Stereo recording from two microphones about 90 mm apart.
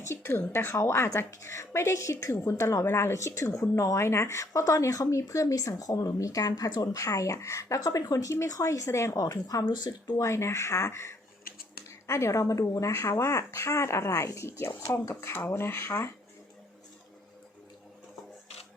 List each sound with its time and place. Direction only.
0.0 s a sound: 30° left (ahead or behind)
0.5 s speech: 30° left (ahead or behind)
9.6 s speech: 50° left (ahead or behind)
10.2 s speech: 30° left (ahead or behind)